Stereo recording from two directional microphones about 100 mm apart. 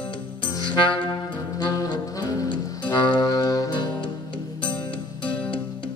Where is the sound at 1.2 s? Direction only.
40° left (ahead or behind).